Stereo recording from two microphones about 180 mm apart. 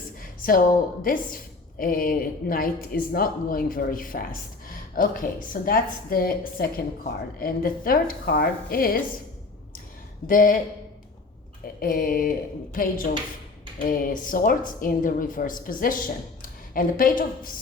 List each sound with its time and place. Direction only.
0.2 s a sound: 50° left (ahead or behind)
1.0 s a woman's voice: 50° left (ahead or behind)
10.2 s a woman's voice: 50° left (ahead or behind)
11.8 s a woman's voice: 55° left (ahead or behind)